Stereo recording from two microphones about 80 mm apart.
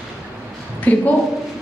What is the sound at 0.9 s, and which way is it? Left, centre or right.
Speech, centre.